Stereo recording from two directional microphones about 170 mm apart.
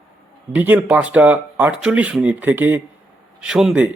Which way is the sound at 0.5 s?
10° right (ahead or behind).